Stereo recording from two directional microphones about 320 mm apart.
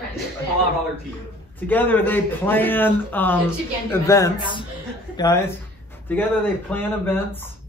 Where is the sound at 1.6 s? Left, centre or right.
Centre.